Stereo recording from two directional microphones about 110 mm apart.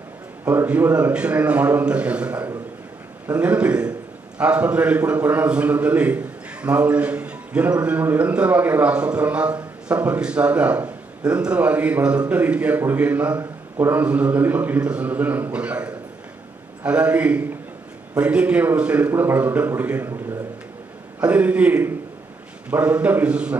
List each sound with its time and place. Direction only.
0.5 s a man's voice: 15° right (ahead or behind)
21.2 s a man's voice: 10° right (ahead or behind)